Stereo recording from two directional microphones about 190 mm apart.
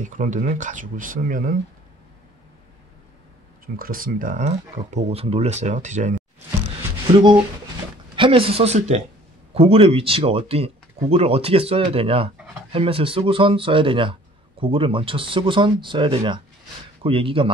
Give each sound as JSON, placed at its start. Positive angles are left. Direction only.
{"t": 0.0, "sound": "speech", "side_deg": -45}
{"t": 3.6, "sound": "speech", "side_deg": -50}
{"t": 7.1, "sound": "speech", "side_deg": -25}